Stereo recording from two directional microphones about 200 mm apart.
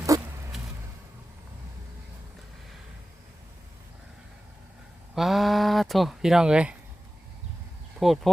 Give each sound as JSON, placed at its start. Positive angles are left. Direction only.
{"t": 0.1, "sound": "a sound", "side_deg": -15}
{"t": 5.1, "sound": "speech", "side_deg": 0}
{"t": 7.9, "sound": "speech", "side_deg": 0}